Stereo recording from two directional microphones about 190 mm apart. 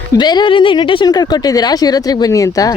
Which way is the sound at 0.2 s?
25° left (ahead or behind).